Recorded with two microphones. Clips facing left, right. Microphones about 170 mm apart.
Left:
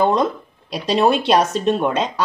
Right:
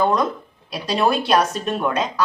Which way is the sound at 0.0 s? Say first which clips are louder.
Left 2 dB; 25° left (ahead or behind).